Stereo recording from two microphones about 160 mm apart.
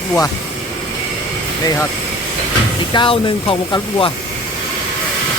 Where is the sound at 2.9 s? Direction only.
35° left (ahead or behind).